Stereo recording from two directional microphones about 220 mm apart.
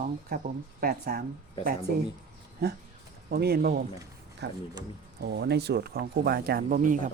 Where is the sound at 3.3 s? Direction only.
45° right (ahead or behind).